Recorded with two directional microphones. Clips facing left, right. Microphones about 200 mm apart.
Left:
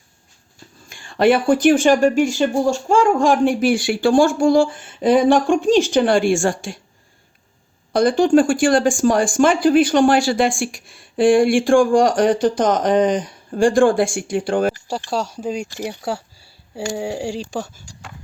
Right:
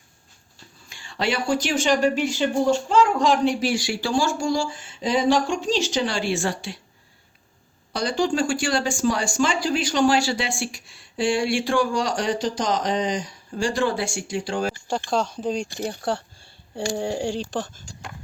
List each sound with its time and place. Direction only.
0.9 s speech: 50° left (ahead or behind)
7.9 s speech: 55° left (ahead or behind)
14.8 s speech: 5° left (ahead or behind)